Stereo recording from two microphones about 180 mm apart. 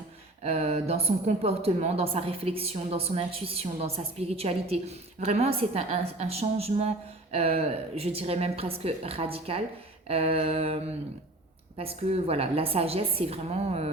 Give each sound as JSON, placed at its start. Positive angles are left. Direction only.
{"t": 0.4, "sound": "speech", "side_deg": -35}
{"t": 11.8, "sound": "speech", "side_deg": -35}